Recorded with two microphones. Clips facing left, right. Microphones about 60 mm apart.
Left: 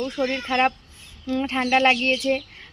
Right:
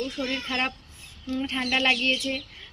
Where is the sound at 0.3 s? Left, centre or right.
Left.